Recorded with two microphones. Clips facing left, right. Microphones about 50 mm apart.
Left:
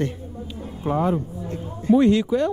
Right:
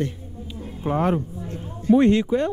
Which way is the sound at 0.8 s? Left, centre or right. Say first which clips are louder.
Even; right.